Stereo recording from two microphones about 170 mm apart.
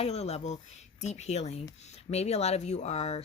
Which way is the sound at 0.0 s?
40° left (ahead or behind).